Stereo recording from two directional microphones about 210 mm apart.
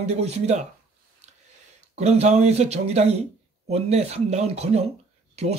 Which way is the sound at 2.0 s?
30° right (ahead or behind).